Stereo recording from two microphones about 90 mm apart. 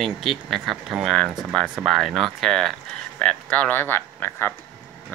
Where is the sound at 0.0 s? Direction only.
Centre (ahead or behind).